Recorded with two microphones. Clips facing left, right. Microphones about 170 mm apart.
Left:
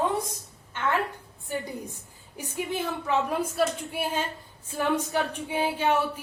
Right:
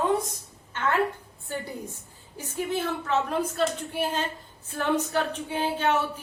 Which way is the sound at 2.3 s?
15° left (ahead or behind).